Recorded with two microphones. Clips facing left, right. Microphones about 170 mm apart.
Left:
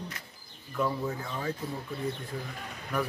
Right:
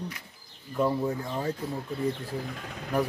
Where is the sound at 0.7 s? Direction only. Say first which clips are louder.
Right 4 dB; 30° right (ahead or behind).